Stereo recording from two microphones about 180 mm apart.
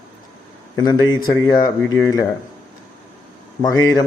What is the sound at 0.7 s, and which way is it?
Speech, 20° left (ahead or behind).